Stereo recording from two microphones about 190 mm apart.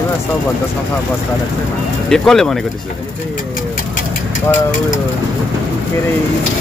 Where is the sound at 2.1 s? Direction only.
Centre (ahead or behind).